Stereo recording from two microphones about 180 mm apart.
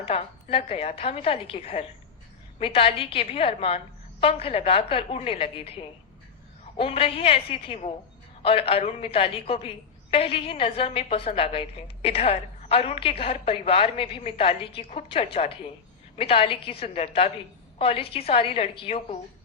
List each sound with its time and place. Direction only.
0.0 s a woman's voice: 35° left (ahead or behind)